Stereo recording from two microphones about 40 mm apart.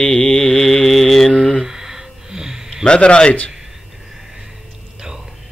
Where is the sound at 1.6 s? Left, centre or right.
Centre.